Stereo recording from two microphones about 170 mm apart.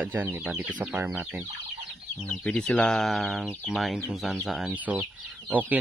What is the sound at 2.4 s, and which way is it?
Speech, 5° left (ahead or behind).